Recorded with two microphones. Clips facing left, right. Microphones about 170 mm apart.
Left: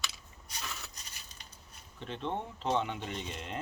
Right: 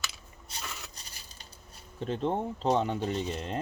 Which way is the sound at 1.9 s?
40° right (ahead or behind).